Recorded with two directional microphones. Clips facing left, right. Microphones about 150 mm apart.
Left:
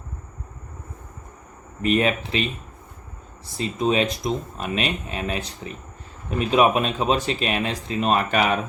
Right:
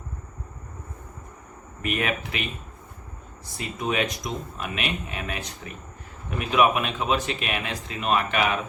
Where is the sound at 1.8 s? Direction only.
30° left (ahead or behind).